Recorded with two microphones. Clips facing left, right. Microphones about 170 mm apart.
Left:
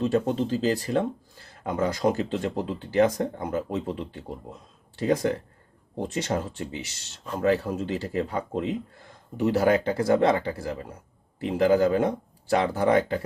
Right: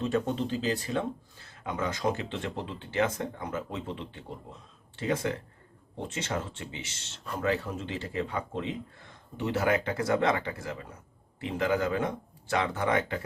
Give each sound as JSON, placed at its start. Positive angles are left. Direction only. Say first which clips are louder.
{"t": 0.0, "sound": "speech", "louder": "left 5 dB", "side_deg": 35}